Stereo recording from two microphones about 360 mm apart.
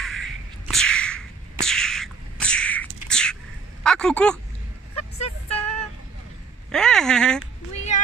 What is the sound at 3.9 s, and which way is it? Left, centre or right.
Speech, centre.